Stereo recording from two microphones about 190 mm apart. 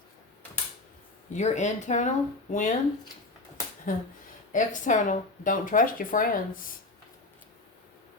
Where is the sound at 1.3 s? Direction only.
40° left (ahead or behind).